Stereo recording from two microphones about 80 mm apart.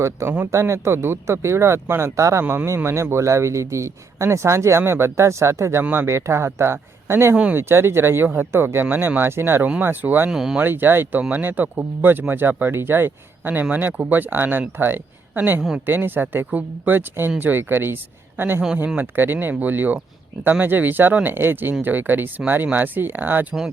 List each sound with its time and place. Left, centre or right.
0.0 s speech: right
2.4 s speech: right
2.6 s speech: right
10.2 s speech: centre
10.6 s speech: right